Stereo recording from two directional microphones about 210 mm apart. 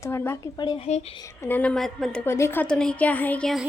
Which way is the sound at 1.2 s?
10° left (ahead or behind).